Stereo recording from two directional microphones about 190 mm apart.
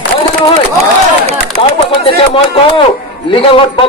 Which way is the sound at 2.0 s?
30° left (ahead or behind).